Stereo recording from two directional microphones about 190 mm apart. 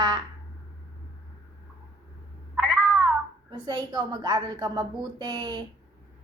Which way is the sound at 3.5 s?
20° right (ahead or behind).